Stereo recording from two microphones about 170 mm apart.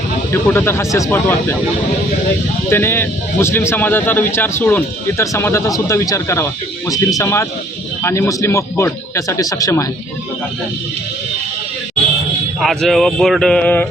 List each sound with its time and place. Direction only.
0.4 s speech: 15° left (ahead or behind)
2.6 s speech: 15° left (ahead or behind)
12.6 s speech: centre (ahead or behind)